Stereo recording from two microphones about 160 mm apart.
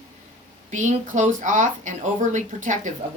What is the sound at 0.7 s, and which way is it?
Speech, 50° right (ahead or behind).